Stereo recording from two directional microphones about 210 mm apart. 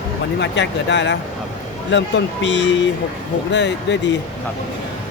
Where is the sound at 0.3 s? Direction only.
55° left (ahead or behind).